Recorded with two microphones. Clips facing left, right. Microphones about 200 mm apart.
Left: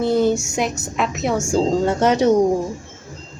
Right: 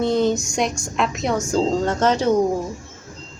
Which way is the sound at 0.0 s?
5° left (ahead or behind).